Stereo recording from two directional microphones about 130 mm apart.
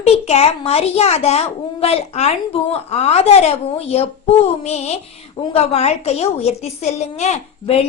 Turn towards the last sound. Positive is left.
turn(degrees=60)  # may be behind; listen again after turning